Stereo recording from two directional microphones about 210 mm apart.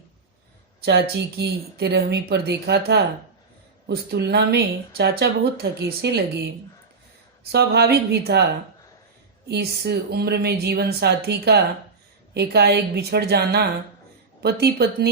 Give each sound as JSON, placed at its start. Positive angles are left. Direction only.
{"t": 0.9, "sound": "speech", "side_deg": -50}
{"t": 7.5, "sound": "speech", "side_deg": -50}
{"t": 9.5, "sound": "speech", "side_deg": -50}